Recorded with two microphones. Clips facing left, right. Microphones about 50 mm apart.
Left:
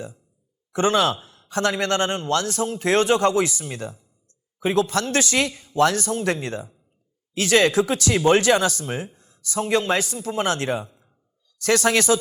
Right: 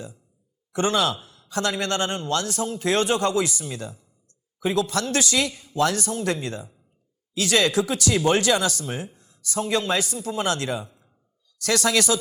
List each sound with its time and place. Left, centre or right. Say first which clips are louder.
0.7 s a man's voice: left 3 dB; left